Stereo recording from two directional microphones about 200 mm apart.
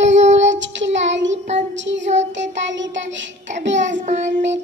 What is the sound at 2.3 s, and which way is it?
Child singing, 65° right (ahead or behind).